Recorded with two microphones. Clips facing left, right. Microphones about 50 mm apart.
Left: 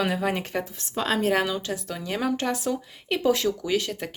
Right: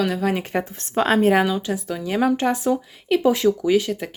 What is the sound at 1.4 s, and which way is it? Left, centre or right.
Speech, centre.